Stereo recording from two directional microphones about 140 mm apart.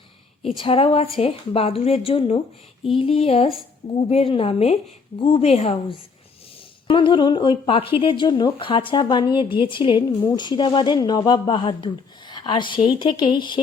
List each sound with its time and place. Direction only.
0.4 s a woman's voice: 40° left (ahead or behind)
6.8 s a woman's voice: 35° left (ahead or behind)